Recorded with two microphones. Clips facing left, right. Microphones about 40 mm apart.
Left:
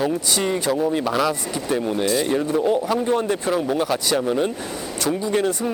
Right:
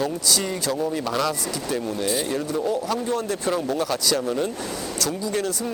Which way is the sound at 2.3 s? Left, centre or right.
Left.